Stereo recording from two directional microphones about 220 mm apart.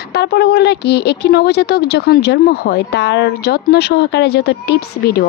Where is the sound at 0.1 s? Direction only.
50° left (ahead or behind).